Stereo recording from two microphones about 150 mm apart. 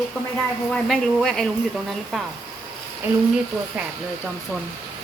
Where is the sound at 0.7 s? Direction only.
Centre (ahead or behind).